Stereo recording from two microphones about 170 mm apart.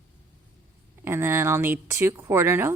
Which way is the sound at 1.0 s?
15° right (ahead or behind).